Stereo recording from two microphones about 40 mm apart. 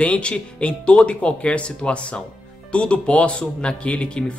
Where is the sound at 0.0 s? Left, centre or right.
Left.